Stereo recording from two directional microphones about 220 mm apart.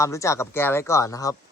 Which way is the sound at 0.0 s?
15° left (ahead or behind).